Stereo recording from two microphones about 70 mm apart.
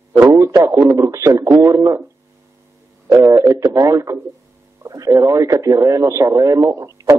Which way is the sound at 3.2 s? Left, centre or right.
Right.